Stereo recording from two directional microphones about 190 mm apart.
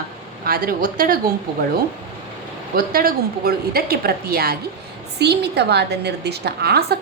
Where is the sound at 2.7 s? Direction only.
50° right (ahead or behind).